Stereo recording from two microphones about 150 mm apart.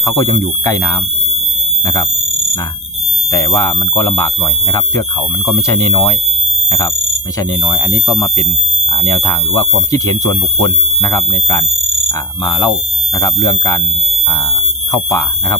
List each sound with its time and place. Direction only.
0.0 s speech: 20° left (ahead or behind)
3.3 s speech: 20° left (ahead or behind)
5.5 s speech: 20° left (ahead or behind)
7.3 s speech: 30° left (ahead or behind)
9.0 s speech: 20° left (ahead or behind)
14.9 s speech: 25° left (ahead or behind)